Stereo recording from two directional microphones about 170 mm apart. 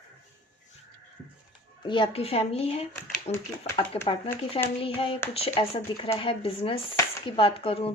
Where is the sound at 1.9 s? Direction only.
30° left (ahead or behind).